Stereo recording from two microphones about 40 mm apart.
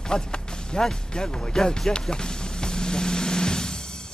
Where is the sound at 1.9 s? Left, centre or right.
Centre.